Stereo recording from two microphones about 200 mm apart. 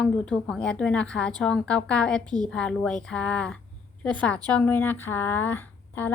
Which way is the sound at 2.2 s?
20° right (ahead or behind).